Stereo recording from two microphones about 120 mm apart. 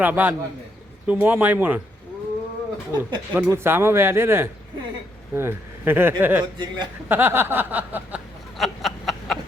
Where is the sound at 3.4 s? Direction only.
20° right (ahead or behind).